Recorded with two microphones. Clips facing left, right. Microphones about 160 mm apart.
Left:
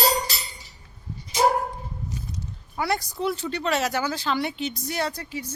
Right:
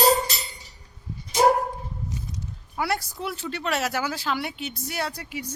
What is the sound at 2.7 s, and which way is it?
A woman's voice, 5° right (ahead or behind).